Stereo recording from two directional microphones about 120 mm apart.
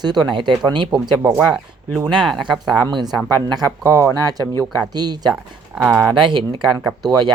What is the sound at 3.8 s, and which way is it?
Speech, 25° right (ahead or behind).